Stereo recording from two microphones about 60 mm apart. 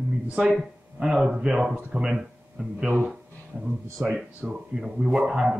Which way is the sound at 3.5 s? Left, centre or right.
Right.